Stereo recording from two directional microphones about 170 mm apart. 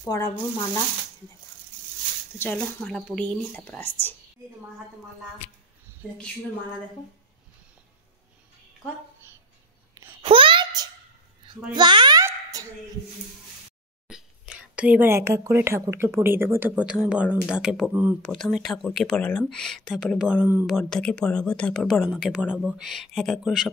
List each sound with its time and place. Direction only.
0.0 s speech: 20° left (ahead or behind)
2.3 s speech: 10° left (ahead or behind)
10.2 s a sound: 30° right (ahead or behind)
14.0 s speech: 5° right (ahead or behind)
20.6 s speech: centre (ahead or behind)